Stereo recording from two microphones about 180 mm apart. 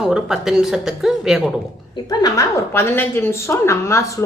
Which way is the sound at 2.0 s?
20° left (ahead or behind).